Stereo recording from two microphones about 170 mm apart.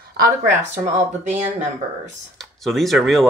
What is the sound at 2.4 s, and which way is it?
Speech, centre (ahead or behind).